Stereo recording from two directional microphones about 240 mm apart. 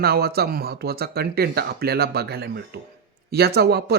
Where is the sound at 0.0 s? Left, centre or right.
Right.